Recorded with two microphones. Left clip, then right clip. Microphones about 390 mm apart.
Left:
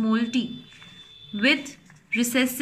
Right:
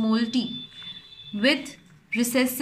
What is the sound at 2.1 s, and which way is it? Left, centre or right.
Speech, centre.